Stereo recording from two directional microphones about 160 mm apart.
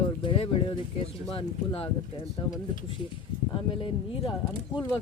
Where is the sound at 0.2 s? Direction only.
35° left (ahead or behind).